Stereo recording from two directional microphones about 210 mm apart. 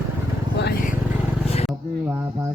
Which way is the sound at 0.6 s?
45° left (ahead or behind).